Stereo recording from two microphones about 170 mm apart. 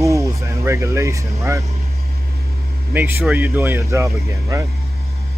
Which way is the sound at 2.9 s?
15° right (ahead or behind).